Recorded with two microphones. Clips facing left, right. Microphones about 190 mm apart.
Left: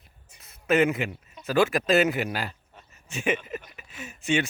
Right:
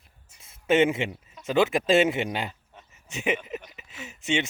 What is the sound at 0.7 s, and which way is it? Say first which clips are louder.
Speech: right 1 dB; 25° right (ahead or behind).